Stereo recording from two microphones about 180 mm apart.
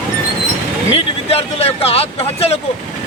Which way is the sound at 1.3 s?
35° left (ahead or behind).